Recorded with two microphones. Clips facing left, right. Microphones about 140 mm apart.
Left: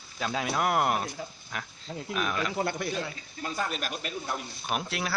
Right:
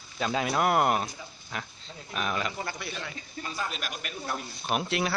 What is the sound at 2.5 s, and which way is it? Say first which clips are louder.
Speech: left 6 dB; 60° left (ahead or behind).